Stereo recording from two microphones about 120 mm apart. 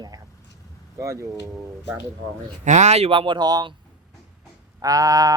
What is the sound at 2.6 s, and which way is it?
Speech, 75° right (ahead or behind).